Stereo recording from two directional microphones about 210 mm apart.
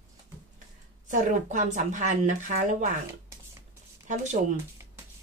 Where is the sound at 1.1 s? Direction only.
35° right (ahead or behind).